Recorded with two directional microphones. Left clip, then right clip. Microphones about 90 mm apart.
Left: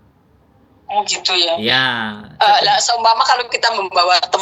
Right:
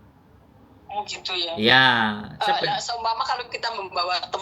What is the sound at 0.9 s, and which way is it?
Speech, 40° left (ahead or behind).